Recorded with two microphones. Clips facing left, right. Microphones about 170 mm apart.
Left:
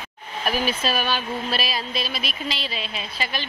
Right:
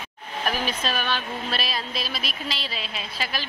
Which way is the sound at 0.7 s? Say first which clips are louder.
Left 3 dB; 10° left (ahead or behind).